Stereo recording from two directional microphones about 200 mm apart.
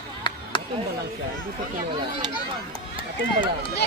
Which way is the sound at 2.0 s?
25° right (ahead or behind).